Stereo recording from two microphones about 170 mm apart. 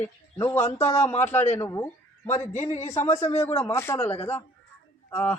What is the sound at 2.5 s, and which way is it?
A man's voice, 45° left (ahead or behind).